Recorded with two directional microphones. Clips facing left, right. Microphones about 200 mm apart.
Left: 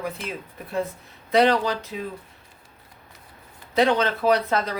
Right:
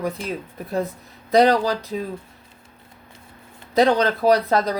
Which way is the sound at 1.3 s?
35° right (ahead or behind).